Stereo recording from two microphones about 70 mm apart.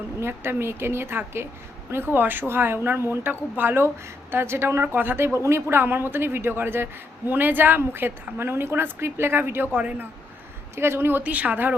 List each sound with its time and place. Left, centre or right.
0.2 s speech: right
11.2 s speech: right